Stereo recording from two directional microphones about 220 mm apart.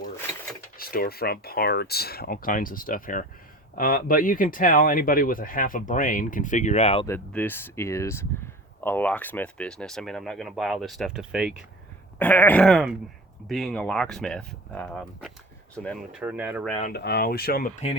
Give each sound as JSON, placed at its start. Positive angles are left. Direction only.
{"t": 0.8, "sound": "speech", "side_deg": 40}
{"t": 7.1, "sound": "speech", "side_deg": 10}
{"t": 12.2, "sound": "speech", "side_deg": 5}
{"t": 16.8, "sound": "speech", "side_deg": 45}